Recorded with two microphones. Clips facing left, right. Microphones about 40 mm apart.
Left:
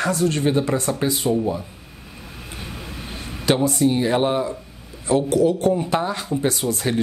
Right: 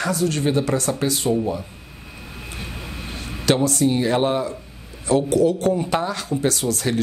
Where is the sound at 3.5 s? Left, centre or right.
Centre.